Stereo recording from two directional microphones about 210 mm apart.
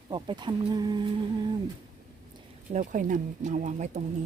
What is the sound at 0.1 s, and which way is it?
Speech, 20° right (ahead or behind).